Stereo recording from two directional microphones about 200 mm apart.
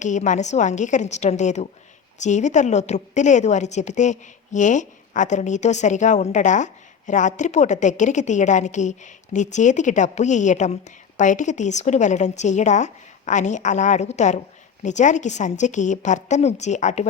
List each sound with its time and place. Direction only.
0.0 s a woman's voice: 35° left (ahead or behind)